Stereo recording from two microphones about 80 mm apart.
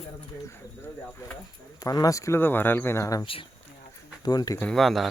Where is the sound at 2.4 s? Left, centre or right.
Left.